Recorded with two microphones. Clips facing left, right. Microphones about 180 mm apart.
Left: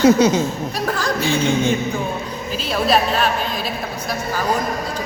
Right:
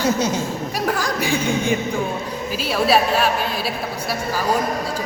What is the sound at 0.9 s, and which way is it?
A woman's voice, 15° right (ahead or behind).